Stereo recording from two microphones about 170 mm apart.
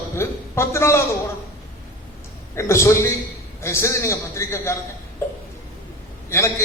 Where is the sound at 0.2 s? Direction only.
15° left (ahead or behind).